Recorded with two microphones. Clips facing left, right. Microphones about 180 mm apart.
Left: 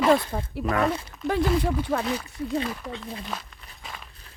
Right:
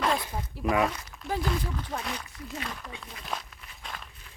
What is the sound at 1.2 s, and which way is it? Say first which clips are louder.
Speech: left 7 dB; 70° left (ahead or behind).